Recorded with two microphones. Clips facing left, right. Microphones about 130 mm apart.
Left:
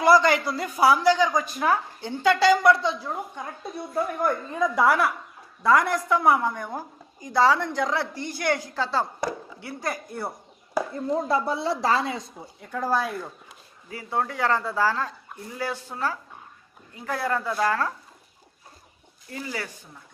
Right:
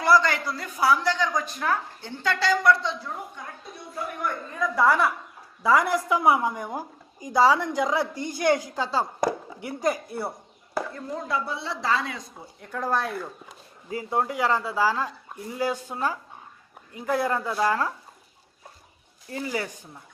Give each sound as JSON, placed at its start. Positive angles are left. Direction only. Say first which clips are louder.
{"t": 0.0, "sound": "a man's voice", "louder": "left 3 dB", "side_deg": 15}
{"t": 3.9, "sound": "speech", "louder": "left 6 dB", "side_deg": 45}
{"t": 4.5, "sound": "a woman's voice", "louder": "even", "side_deg": 20}
{"t": 5.6, "sound": "a woman's voice", "louder": "left 1 dB", "side_deg": -5}
{"t": 10.9, "sound": "speech", "louder": "left 5 dB", "side_deg": 30}
{"t": 12.5, "sound": "speech", "louder": "left 1 dB", "side_deg": 0}
{"t": 13.5, "sound": "speech", "louder": "right 7 dB", "side_deg": -25}
{"t": 14.4, "sound": "a woman's voice", "louder": "left 2 dB", "side_deg": -5}
{"t": 19.5, "sound": "a woman's voice", "louder": "right 4 dB", "side_deg": -15}